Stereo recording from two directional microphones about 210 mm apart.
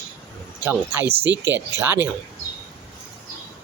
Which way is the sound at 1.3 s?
60° right (ahead or behind).